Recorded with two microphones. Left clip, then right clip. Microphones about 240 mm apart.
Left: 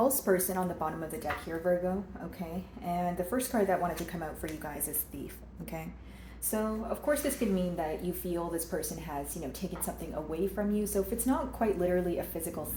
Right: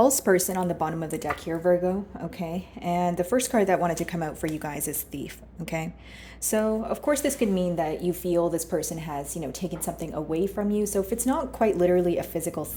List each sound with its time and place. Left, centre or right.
0.0 s a woman's voice: right
6.5 s a woman's voice: right